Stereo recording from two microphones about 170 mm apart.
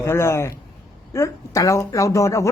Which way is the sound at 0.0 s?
15° left (ahead or behind).